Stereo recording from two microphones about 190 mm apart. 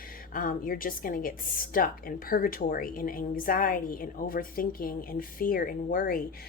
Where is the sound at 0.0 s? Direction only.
50° left (ahead or behind).